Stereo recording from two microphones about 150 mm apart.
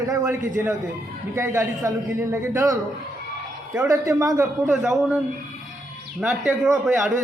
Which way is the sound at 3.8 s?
20° right (ahead or behind).